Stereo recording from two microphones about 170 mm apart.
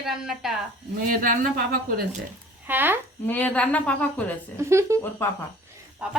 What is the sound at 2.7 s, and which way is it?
Speech, 10° right (ahead or behind).